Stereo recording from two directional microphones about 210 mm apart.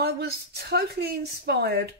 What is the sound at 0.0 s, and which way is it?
Speech, 50° right (ahead or behind).